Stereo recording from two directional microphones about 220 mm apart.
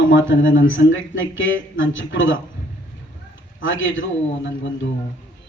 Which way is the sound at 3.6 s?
60° left (ahead or behind).